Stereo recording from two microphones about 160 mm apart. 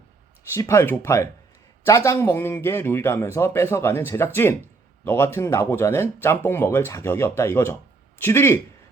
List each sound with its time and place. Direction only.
0.5 s a man's voice: 15° left (ahead or behind)